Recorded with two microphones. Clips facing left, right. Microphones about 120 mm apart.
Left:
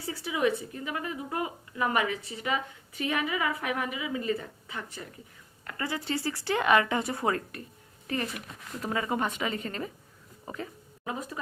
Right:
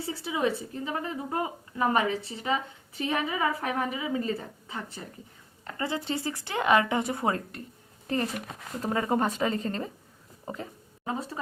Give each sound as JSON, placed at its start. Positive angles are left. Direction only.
{"t": 0.0, "sound": "a woman's voice", "side_deg": -25}
{"t": 8.0, "sound": "a woman's voice", "side_deg": -35}
{"t": 10.4, "sound": "a sound", "side_deg": -25}